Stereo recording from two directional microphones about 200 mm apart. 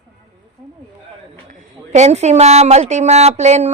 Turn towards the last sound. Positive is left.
turn(degrees=-35)  # may be behind; listen again after turning